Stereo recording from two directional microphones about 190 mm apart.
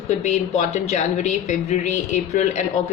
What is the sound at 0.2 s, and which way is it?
A woman's voice, 40° left (ahead or behind).